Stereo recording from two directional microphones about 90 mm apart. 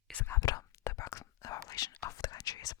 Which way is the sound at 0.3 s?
45° left (ahead or behind).